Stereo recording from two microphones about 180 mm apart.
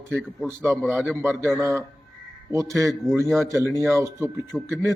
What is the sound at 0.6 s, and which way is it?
Speech, 5° left (ahead or behind).